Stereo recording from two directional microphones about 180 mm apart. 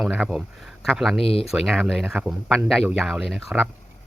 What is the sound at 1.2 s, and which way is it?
Speech, 30° left (ahead or behind).